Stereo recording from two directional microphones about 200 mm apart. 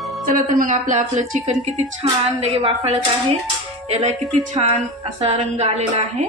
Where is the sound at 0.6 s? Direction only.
40° right (ahead or behind).